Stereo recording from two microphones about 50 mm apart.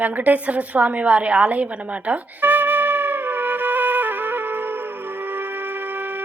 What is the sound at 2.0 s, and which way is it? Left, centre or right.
Music, right.